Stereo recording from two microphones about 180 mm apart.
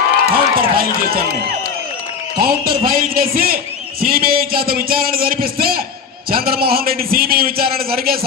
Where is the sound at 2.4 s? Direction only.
55° right (ahead or behind).